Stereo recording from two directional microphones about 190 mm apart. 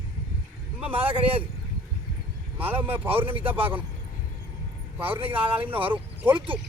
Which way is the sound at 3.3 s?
30° right (ahead or behind).